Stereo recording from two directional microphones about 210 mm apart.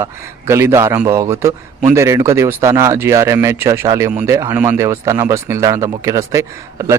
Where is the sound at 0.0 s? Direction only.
10° right (ahead or behind).